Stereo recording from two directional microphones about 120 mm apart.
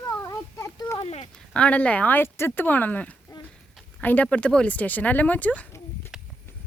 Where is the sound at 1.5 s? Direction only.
10° left (ahead or behind).